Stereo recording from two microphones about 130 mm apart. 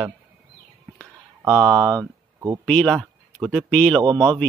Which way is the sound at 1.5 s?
10° left (ahead or behind).